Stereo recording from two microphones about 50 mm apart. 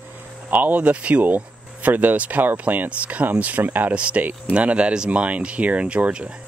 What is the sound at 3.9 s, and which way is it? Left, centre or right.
Speech, right.